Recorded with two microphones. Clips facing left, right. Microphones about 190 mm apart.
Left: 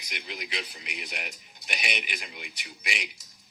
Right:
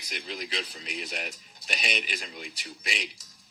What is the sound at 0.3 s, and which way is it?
Speech, 35° right (ahead or behind).